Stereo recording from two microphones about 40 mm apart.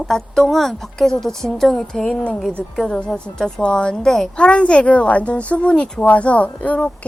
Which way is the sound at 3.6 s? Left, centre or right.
Left.